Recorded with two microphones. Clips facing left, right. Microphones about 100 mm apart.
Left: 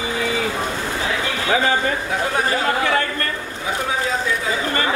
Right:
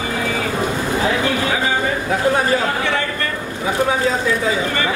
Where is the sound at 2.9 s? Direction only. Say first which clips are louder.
Even; 45° left (ahead or behind).